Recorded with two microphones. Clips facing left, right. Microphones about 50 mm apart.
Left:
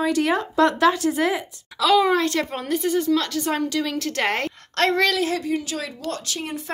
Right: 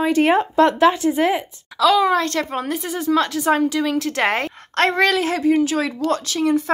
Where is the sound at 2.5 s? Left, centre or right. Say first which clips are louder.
Left 1 dB; centre.